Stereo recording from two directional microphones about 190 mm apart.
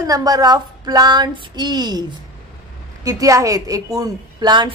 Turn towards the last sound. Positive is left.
turn(degrees=-20)  # may be behind; listen again after turning